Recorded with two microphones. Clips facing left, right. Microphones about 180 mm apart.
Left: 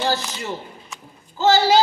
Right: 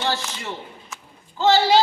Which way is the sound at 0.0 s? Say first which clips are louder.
Left 3 dB; 40° left (ahead or behind).